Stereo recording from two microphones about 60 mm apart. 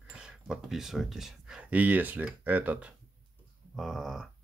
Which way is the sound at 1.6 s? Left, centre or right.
Right.